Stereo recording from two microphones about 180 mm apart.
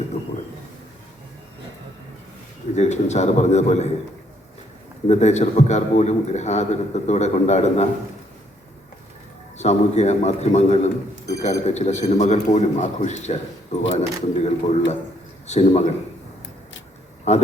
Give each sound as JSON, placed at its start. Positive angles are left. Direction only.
{"t": 2.7, "sound": "a man's voice", "side_deg": 40}
{"t": 5.0, "sound": "a man's voice", "side_deg": 40}
{"t": 9.6, "sound": "a man's voice", "side_deg": 40}
{"t": 17.3, "sound": "a man's voice", "side_deg": 40}